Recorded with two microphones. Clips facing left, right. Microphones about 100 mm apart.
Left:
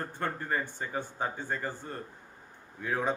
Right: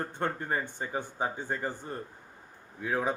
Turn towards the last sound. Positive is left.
turn(degrees=-10)  # may be behind; listen again after turning